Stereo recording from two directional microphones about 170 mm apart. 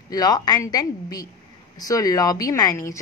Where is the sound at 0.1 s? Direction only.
25° left (ahead or behind).